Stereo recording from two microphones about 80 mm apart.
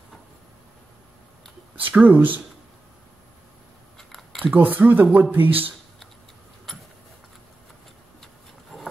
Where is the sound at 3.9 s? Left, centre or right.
Centre.